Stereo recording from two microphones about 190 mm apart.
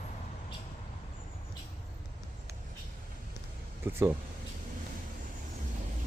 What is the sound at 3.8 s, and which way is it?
Speech, 10° right (ahead or behind).